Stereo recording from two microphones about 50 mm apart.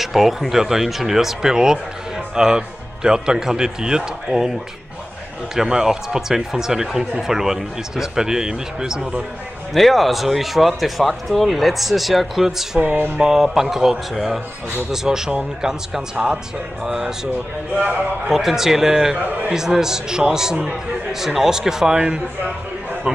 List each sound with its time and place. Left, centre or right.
0.0 s speech: centre
5.6 s speech: centre
9.8 s speech: centre
12.8 s a man's voice: right
13.2 s speech: centre
16.8 s speech: centre
17.7 s a man's voice: right
18.3 s speech: centre
19.2 s a man's voice: right
19.5 s speech: centre